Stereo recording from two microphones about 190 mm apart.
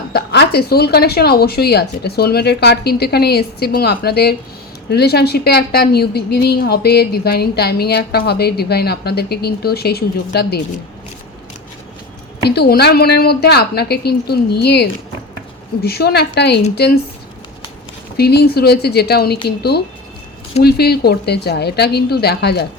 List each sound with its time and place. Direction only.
0.1 s a woman's voice: 60° left (ahead or behind)
12.4 s a woman's voice: 55° left (ahead or behind)
18.2 s a woman's voice: 60° left (ahead or behind)